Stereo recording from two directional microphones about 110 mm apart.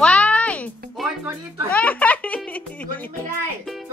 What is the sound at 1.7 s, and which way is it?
Music, 15° left (ahead or behind).